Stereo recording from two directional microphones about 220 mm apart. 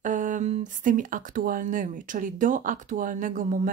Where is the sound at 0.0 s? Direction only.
35° right (ahead or behind).